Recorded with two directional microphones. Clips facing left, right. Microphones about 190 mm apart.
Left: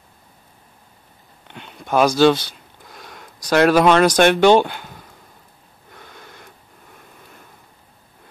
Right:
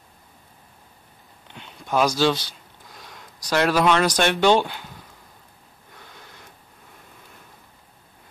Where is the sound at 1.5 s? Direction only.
60° left (ahead or behind).